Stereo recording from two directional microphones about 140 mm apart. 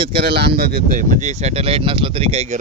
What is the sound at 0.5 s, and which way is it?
Speech, 90° right.